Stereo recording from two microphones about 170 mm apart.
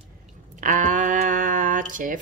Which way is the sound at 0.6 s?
50° right (ahead or behind).